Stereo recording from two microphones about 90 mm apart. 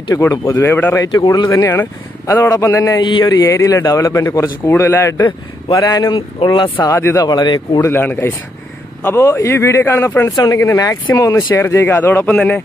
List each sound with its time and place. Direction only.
0.1 s speech: 25° left (ahead or behind)
0.9 s speech: 45° left (ahead or behind)
1.8 s a man's voice: 25° left (ahead or behind)
3.0 s speech: 65° left (ahead or behind)
3.4 s a man's voice: 35° left (ahead or behind)
5.8 s speech: 50° left (ahead or behind)
6.9 s speech: 30° left (ahead or behind)
7.2 s speech: 50° left (ahead or behind)
7.8 s a man's voice: 25° left (ahead or behind)
10.3 s a man's voice: 45° left (ahead or behind); by 12.6 s 15° left (ahead or behind)